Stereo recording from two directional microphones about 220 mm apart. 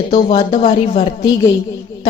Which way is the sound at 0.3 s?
25° left (ahead or behind).